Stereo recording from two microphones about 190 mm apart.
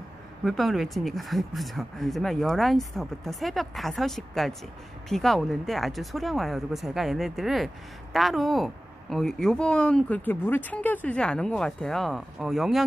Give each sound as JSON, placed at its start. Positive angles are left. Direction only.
{"t": 0.4, "sound": "speech", "side_deg": 0}